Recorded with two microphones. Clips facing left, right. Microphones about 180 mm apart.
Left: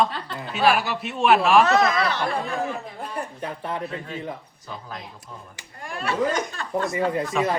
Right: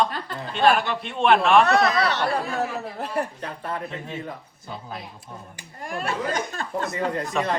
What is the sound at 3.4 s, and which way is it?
Speech, 15° left (ahead or behind).